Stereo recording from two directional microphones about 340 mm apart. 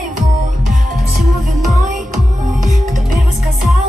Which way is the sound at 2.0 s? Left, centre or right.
Right.